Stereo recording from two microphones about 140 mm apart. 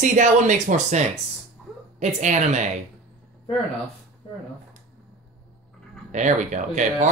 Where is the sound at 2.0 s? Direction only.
55° right (ahead or behind).